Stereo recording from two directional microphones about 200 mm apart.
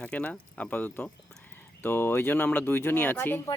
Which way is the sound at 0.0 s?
5° left (ahead or behind).